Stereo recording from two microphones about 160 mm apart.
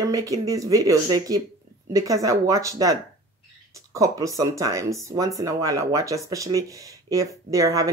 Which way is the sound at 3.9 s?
20° right (ahead or behind).